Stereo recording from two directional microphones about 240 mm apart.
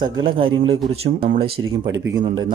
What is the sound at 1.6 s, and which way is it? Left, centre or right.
Speech, right.